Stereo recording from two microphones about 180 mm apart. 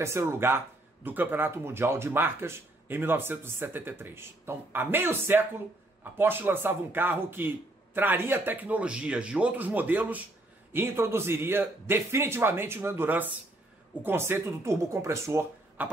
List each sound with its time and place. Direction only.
0.0 s speech: 15° right (ahead or behind)